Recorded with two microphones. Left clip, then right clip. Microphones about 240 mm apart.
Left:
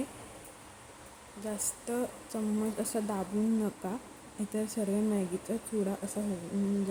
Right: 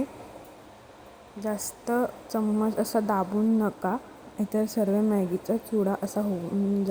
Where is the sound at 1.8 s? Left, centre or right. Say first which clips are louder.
Right 10 dB; centre.